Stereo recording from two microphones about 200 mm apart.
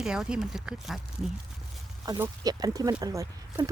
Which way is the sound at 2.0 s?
15° right (ahead or behind).